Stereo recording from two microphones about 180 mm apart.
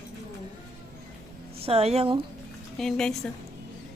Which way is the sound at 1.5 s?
35° right (ahead or behind).